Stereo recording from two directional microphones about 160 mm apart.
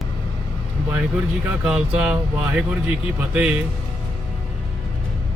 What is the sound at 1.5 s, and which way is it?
Speech, 10° right (ahead or behind).